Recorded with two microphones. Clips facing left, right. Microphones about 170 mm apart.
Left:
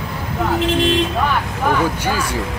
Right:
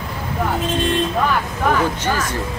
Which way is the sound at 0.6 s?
90° left.